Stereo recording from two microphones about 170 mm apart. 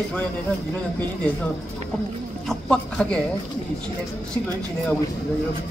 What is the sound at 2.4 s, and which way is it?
Speech, 5° left (ahead or behind).